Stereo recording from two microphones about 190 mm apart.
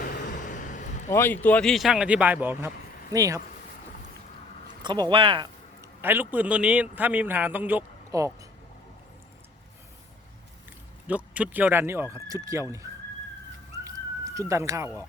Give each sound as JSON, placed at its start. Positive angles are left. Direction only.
{"t": 0.0, "sound": "vehicle", "side_deg": 45}
{"t": 1.1, "sound": "speech", "side_deg": 10}
{"t": 4.8, "sound": "speech", "side_deg": -25}
{"t": 5.8, "sound": "a man's voice", "side_deg": -10}
{"t": 11.0, "sound": "speech", "side_deg": -10}
{"t": 13.8, "sound": "bird", "side_deg": -15}